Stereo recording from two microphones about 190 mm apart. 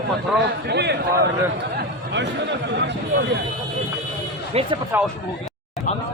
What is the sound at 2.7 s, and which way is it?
Speech, 65° right (ahead or behind).